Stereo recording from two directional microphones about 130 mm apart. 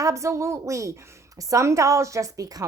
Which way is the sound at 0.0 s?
25° right (ahead or behind).